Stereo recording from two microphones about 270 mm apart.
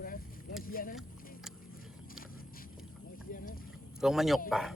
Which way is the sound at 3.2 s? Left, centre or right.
Left.